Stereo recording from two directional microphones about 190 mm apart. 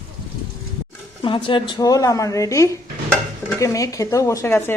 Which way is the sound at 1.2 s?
25° left (ahead or behind).